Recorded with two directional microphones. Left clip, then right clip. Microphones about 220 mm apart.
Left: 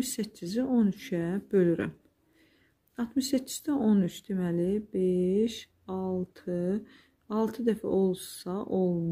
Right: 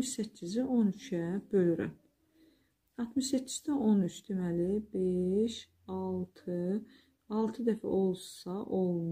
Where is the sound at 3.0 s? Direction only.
30° left (ahead or behind).